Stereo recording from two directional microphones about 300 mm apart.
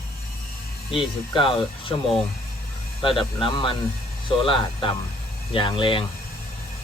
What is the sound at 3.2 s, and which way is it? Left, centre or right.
Speech, centre.